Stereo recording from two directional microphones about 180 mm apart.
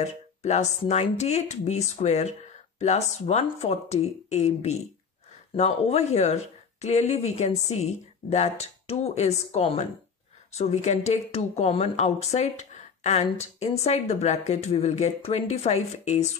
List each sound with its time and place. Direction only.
0.0 s speech: 40° left (ahead or behind)